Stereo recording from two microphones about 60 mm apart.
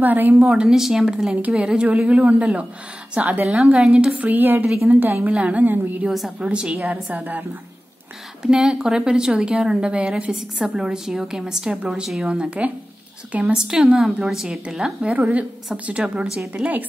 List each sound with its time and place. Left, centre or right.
0.0 s a woman's voice: right
0.4 s a woman's voice: centre
4.1 s a woman's voice: right
5.3 s a woman's voice: right
6.0 s a woman's voice: centre
6.4 s a woman's voice: centre
8.4 s a woman's voice: centre
15.1 s a woman's voice: right